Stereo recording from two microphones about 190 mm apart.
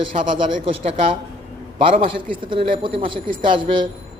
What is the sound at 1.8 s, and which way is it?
A man's voice, 30° right (ahead or behind).